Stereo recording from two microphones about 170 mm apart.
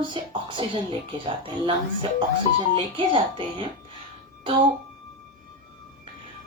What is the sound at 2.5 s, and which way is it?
Speech, 30° right (ahead or behind).